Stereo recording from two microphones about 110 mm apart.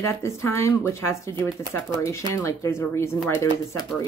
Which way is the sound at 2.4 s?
25° left (ahead or behind).